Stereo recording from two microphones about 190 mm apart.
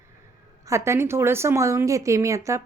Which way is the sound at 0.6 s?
15° right (ahead or behind).